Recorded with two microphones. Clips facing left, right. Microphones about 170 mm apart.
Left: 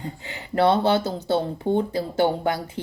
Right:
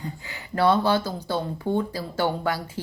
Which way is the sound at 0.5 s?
25° left (ahead or behind).